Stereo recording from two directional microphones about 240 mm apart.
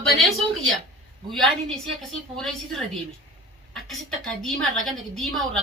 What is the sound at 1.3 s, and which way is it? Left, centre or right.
A woman's voice, centre.